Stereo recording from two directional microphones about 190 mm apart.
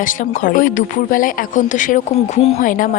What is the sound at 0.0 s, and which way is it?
Speech, 45° left (ahead or behind).